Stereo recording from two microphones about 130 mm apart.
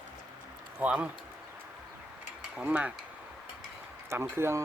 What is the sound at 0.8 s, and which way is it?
Speech, 10° right (ahead or behind).